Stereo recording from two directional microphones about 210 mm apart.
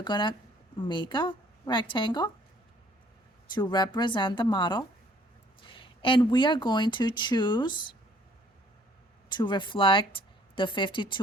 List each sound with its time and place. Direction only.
0.0 s a woman's voice: 20° left (ahead or behind)
3.5 s a woman's voice: 20° left (ahead or behind)
9.3 s speech: 20° left (ahead or behind)